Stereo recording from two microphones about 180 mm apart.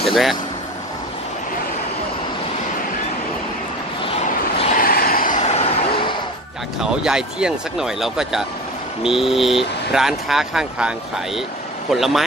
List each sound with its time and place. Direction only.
0.0 s speech: centre (ahead or behind)
4.0 s vehicle: 30° left (ahead or behind)
4.7 s vehicle: 55° left (ahead or behind)
6.8 s speech: 5° right (ahead or behind)
11.9 s speech: centre (ahead or behind)